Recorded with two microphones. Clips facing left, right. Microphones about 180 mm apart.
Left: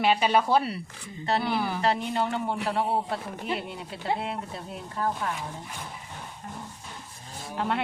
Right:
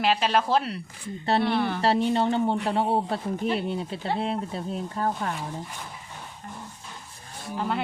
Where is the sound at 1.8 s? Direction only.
30° right (ahead or behind).